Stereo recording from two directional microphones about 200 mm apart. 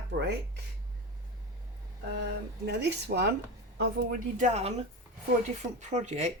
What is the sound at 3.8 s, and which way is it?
Speech, 40° right (ahead or behind).